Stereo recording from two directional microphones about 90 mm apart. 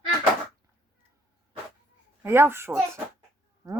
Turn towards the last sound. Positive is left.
turn(degrees=-40)  # may be behind; listen again after turning